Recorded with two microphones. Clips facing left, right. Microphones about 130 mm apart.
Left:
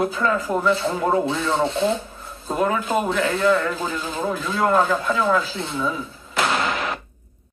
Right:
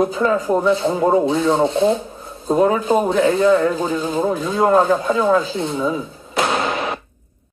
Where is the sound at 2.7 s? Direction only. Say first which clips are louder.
Right 5 dB; 30° right (ahead or behind).